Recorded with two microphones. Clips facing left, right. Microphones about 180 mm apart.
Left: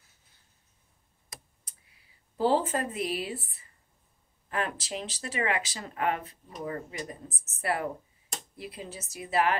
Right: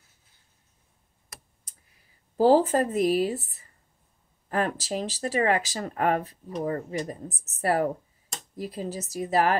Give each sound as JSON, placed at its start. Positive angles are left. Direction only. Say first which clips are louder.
{"t": 2.0, "sound": "speech", "louder": "right 6 dB", "side_deg": -40}